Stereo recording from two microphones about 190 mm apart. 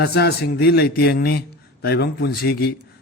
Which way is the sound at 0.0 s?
60° left (ahead or behind).